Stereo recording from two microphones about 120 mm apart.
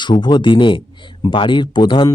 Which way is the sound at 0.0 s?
40° left (ahead or behind).